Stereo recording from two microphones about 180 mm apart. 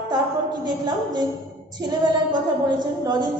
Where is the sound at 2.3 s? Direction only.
25° right (ahead or behind).